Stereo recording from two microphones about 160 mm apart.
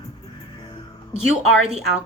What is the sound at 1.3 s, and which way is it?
Speech, 40° right (ahead or behind).